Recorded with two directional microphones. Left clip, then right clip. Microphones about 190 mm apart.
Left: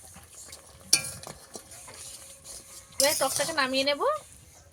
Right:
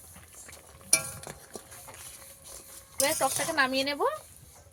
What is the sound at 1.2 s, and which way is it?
Cutlery, 10° right (ahead or behind).